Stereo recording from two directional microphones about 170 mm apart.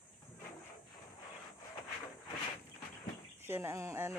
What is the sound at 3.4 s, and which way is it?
Speech, 15° right (ahead or behind).